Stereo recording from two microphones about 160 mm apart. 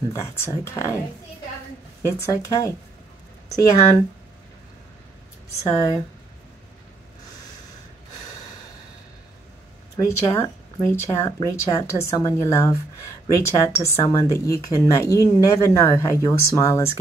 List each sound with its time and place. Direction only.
0.1 s speech: 20° left (ahead or behind)
2.0 s speech: 20° left (ahead or behind)
5.6 s speech: 20° left (ahead or behind)
9.9 s speech: 15° left (ahead or behind)